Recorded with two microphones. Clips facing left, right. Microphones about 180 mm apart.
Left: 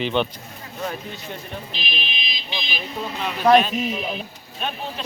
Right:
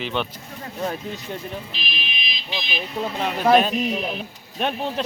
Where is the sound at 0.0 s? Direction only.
Centre (ahead or behind).